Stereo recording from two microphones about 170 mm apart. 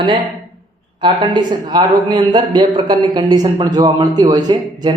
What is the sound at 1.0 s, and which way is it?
A man's voice, 25° right (ahead or behind).